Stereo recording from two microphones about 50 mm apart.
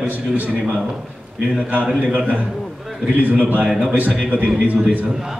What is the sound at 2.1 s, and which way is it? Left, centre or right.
A man's voice, right.